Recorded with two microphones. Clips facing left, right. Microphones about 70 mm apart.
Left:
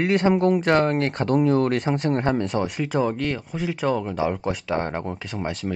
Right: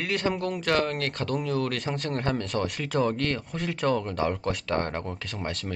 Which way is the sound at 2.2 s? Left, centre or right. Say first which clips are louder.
Left 5 dB; centre.